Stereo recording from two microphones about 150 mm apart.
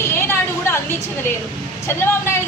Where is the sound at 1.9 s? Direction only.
15° left (ahead or behind).